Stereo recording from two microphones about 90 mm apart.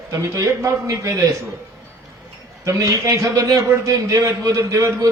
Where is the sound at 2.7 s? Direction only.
35° right (ahead or behind).